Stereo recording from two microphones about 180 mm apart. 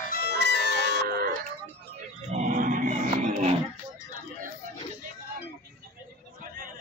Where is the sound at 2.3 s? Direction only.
45° right (ahead or behind).